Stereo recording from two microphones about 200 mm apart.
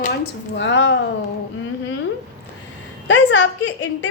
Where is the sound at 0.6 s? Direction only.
65° left (ahead or behind).